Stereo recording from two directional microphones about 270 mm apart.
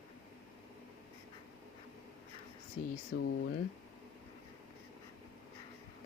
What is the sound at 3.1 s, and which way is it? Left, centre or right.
Speech, left.